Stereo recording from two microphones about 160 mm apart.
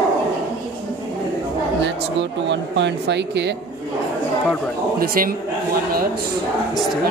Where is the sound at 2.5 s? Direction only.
90° right.